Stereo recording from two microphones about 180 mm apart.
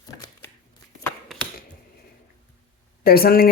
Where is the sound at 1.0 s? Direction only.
5° left (ahead or behind).